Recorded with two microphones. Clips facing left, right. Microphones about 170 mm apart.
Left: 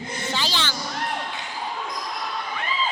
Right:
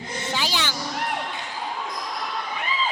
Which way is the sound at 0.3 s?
10° right (ahead or behind).